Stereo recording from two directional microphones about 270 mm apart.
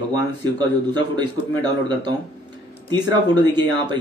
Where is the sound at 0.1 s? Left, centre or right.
Centre.